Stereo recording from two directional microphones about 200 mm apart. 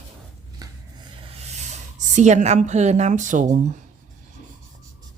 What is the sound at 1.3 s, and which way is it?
A woman's voice, 35° right (ahead or behind).